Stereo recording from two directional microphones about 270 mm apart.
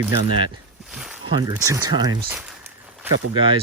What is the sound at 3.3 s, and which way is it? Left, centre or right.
Speech, centre.